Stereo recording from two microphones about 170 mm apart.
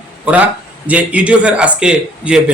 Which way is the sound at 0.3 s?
10° right (ahead or behind).